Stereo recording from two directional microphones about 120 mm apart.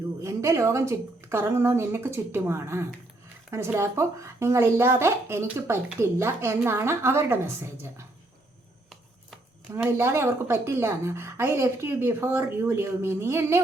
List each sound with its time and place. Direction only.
0.2 s a woman's voice: 25° right (ahead or behind)
9.7 s a woman's voice: 20° right (ahead or behind)